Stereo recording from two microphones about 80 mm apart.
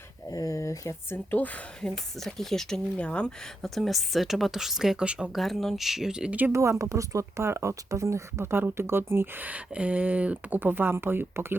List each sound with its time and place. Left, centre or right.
0.3 s a sound: left
1.1 s speech: left
1.8 s speech: centre
3.6 s speech: centre
5.4 s speech: centre
6.5 s speech: right